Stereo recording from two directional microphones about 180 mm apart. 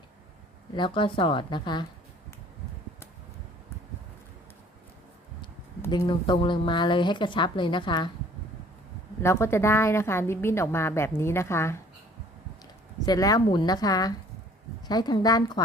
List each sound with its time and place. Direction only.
0.8 s speech: 30° left (ahead or behind)
5.9 s speech: 25° left (ahead or behind)
9.2 s a woman's voice: 15° left (ahead or behind)
13.1 s speech: 20° left (ahead or behind)